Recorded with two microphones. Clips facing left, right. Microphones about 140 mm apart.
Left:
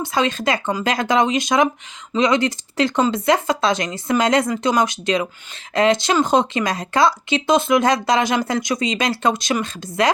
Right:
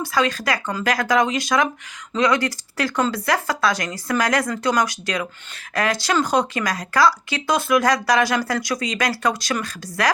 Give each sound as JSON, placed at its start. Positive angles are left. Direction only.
{"t": 0.0, "sound": "speech", "side_deg": 20}